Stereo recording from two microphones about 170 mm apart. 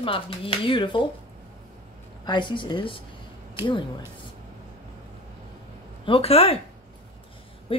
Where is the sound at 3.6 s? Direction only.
15° right (ahead or behind).